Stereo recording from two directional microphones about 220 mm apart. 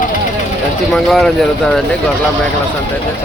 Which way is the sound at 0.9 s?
Centre (ahead or behind).